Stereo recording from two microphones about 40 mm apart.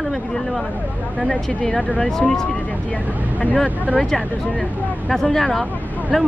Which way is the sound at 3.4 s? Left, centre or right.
Left.